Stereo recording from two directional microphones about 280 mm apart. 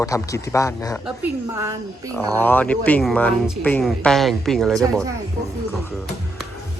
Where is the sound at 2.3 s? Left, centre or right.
Centre.